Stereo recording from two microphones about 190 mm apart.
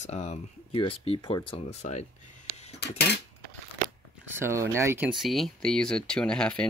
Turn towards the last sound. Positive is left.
turn(degrees=5)  # may be behind; listen again after turning